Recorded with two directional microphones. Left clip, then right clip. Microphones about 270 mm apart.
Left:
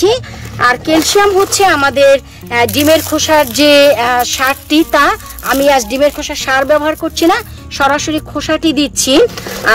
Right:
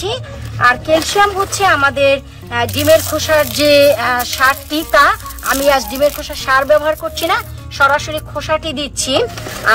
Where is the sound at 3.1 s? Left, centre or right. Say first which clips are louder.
Left 3 dB; left.